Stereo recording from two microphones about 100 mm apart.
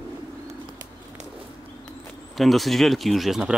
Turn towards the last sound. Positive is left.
turn(degrees=-5)  # may be behind; listen again after turning